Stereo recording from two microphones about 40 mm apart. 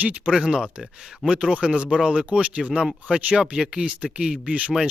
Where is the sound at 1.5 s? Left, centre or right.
Right.